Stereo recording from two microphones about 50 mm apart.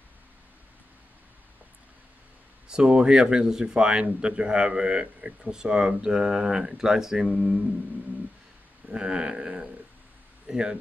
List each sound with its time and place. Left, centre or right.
2.7 s speech: centre
8.9 s speech: centre